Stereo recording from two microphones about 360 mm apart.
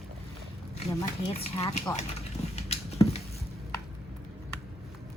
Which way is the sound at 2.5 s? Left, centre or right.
Centre.